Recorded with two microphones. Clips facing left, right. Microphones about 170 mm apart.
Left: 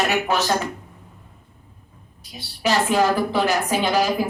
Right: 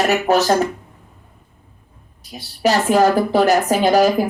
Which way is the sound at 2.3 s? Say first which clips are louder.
Right 4 dB; 45° right (ahead or behind).